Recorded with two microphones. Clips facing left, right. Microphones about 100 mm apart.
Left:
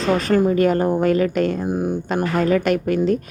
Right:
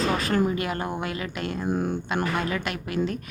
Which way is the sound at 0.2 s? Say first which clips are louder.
Left 8 dB; 40° left (ahead or behind).